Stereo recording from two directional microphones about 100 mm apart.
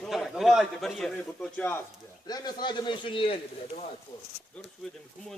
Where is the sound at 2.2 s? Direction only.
45° left (ahead or behind); by 3.4 s 65° left (ahead or behind).